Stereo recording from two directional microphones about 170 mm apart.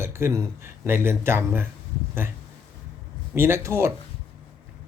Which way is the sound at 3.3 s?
15° right (ahead or behind).